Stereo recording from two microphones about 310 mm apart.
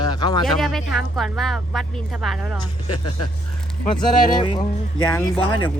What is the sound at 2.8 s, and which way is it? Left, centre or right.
Speech, left.